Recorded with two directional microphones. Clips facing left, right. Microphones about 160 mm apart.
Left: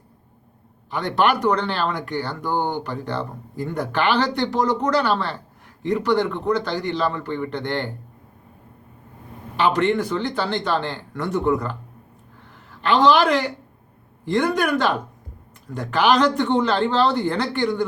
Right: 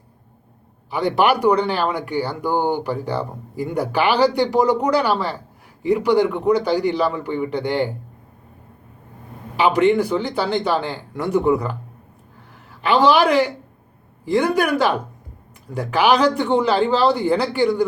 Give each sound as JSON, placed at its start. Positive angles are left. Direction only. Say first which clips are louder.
{"t": 0.9, "sound": "speech", "louder": "right 3 dB", "side_deg": -10}
{"t": 9.6, "sound": "speech", "louder": "right 4 dB", "side_deg": -10}
{"t": 12.8, "sound": "speech", "louder": "right 1 dB", "side_deg": -10}